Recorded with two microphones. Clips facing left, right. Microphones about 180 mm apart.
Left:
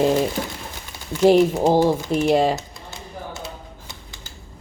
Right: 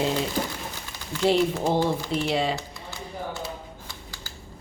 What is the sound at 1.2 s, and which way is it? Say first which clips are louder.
Speech: left 7 dB; 45° left (ahead or behind).